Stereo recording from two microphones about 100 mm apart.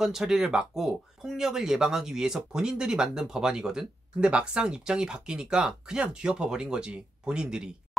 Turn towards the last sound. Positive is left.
turn(degrees=-10)  # may be behind; listen again after turning